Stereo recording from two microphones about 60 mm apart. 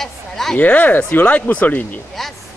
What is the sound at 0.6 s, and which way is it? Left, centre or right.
Speech, left.